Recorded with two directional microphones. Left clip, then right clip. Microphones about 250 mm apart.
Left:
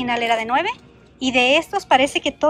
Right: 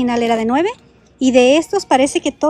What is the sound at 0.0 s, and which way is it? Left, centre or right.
A woman's voice, centre.